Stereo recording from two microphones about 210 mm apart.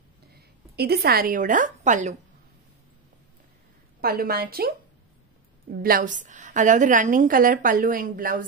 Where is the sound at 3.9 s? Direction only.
45° right (ahead or behind).